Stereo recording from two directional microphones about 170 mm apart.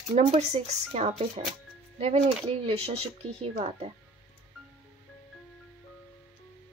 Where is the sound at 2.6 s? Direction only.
35° right (ahead or behind).